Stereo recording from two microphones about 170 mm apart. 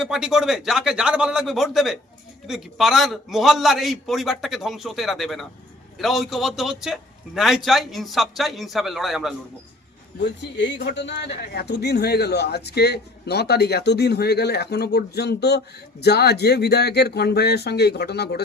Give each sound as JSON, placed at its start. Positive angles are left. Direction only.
{"t": 0.0, "sound": "a man's voice", "side_deg": -5}
{"t": 10.2, "sound": "speech", "side_deg": 90}